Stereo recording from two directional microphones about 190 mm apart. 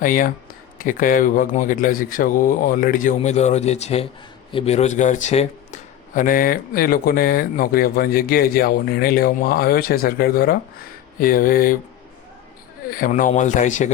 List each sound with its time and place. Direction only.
0.0 s speech: 45° left (ahead or behind)
12.9 s speech: 45° left (ahead or behind)